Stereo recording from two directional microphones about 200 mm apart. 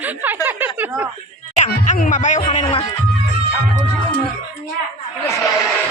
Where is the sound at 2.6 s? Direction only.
30° left (ahead or behind).